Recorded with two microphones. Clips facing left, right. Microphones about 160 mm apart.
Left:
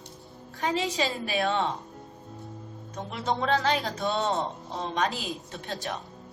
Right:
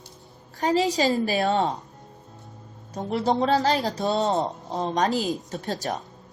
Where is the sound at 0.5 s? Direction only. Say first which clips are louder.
Right 6 dB; 40° right (ahead or behind).